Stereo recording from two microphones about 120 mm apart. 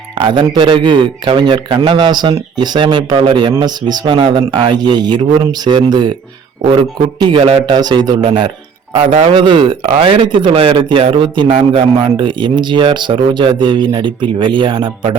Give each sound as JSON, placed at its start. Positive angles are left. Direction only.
{"t": 0.2, "sound": "speech", "side_deg": -40}
{"t": 7.3, "sound": "speech", "side_deg": -60}
{"t": 7.7, "sound": "speech", "side_deg": -35}
{"t": 9.2, "sound": "speech", "side_deg": -45}